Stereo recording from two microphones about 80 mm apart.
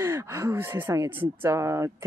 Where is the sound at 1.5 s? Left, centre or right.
Right.